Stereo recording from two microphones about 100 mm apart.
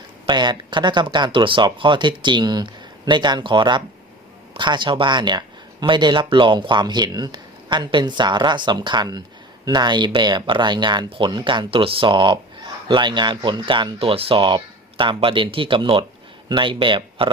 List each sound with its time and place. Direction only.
0.3 s speech: 50° right (ahead or behind)